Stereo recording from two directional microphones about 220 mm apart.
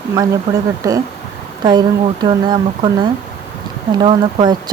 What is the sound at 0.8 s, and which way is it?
Speech, 15° right (ahead or behind).